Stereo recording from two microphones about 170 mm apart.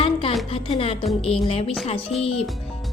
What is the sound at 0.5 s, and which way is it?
Speech, 35° left (ahead or behind).